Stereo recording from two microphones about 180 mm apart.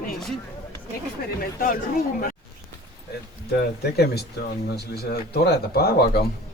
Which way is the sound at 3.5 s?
60° left (ahead or behind).